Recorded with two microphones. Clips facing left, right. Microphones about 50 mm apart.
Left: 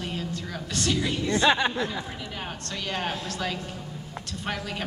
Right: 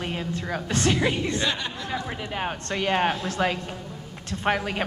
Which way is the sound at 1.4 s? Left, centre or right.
Left.